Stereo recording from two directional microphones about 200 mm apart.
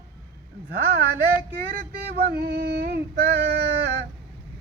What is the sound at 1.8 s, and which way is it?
Female singing, 50° right (ahead or behind).